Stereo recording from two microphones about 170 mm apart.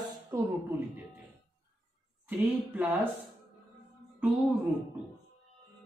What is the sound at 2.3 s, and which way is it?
Speech, 10° right (ahead or behind).